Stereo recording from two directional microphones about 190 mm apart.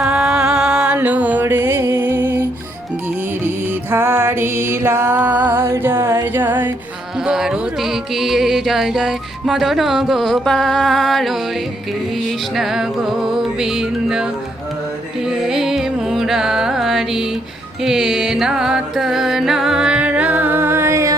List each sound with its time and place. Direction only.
0.0 s music: 5° right (ahead or behind)
3.9 s music: 10° right (ahead or behind)
12.5 s music: centre (ahead or behind)
15.3 s carnatic music: centre (ahead or behind)
17.8 s music: centre (ahead or behind)